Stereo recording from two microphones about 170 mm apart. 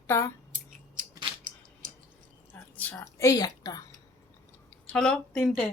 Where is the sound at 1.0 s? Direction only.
50° right (ahead or behind).